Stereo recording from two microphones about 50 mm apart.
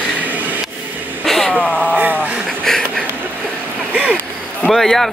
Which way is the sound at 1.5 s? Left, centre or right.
Left.